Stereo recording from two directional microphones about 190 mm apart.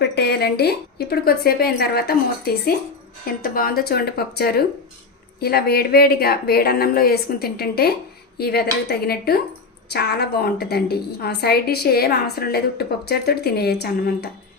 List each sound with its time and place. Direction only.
0.2 s a woman's voice: 60° left (ahead or behind)